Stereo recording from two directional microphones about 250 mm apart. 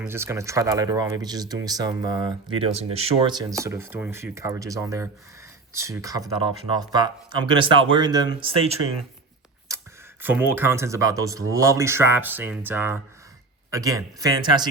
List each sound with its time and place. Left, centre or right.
0.1 s speech: centre
9.6 s speech: centre